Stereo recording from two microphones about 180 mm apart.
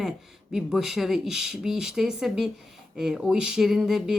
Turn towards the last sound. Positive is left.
turn(degrees=0)  # may be behind; listen again after turning